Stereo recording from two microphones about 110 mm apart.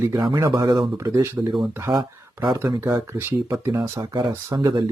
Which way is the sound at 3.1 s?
25° right (ahead or behind).